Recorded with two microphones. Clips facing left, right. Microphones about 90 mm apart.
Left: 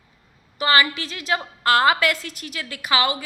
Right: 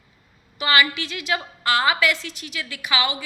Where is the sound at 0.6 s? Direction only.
35° left (ahead or behind).